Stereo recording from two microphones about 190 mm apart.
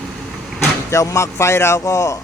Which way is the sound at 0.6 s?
15° left (ahead or behind).